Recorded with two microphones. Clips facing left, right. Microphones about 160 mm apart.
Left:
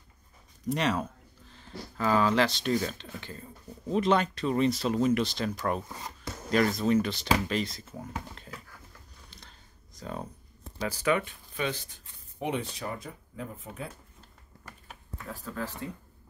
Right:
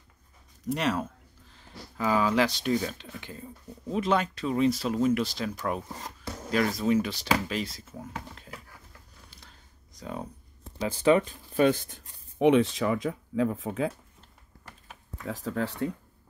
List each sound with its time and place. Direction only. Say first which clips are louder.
0.7 s speech: even; 5° right (ahead or behind)
9.9 s speech: right 1 dB; 10° right (ahead or behind)
10.8 s speech: right 5 dB; 25° right (ahead or behind)
11.6 s speech: right 10 dB; 50° right (ahead or behind)
12.4 s speech: right 11 dB; 90° right
15.2 s speech: right 6 dB; 80° right